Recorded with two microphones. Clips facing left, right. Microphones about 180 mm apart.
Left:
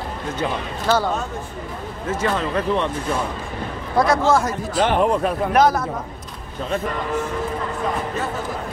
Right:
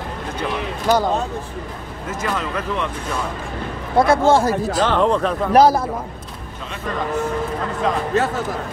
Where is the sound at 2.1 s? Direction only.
30° left (ahead or behind).